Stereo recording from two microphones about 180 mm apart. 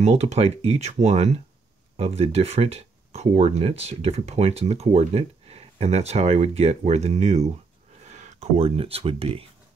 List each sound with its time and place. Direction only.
0.0 s speech: 40° right (ahead or behind)